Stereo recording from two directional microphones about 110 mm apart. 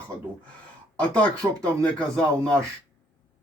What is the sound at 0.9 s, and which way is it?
Speech, 10° left (ahead or behind).